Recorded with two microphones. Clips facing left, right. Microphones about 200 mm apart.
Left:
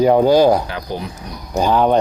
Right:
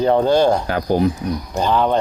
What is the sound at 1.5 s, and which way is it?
Speech, 15° left (ahead or behind).